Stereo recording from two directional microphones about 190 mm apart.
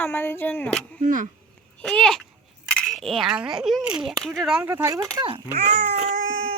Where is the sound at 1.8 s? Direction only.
5° left (ahead or behind); by 4.9 s 10° right (ahead or behind).